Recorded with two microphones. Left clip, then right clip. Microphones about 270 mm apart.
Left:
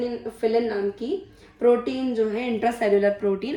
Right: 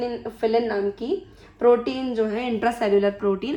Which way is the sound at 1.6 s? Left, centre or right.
Right.